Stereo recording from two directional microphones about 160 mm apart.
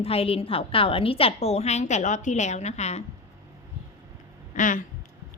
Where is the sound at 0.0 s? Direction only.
35° left (ahead or behind).